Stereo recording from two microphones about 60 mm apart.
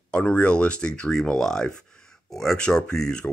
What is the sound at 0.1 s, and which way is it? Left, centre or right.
Speech, left.